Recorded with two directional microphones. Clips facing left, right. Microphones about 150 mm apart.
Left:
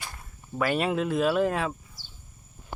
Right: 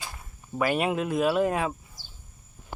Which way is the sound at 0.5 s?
10° right (ahead or behind).